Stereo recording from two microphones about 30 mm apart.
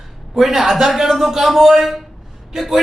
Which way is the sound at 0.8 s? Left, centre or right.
Centre.